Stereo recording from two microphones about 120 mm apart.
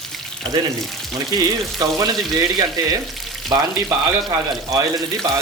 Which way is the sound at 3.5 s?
40° right (ahead or behind).